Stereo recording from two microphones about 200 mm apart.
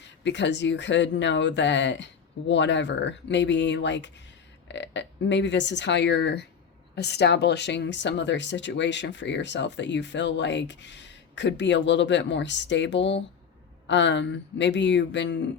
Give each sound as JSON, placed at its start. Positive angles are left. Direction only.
{"t": 0.0, "sound": "speech", "side_deg": 60}